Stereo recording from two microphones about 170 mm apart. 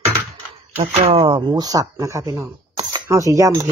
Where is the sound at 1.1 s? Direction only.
30° right (ahead or behind).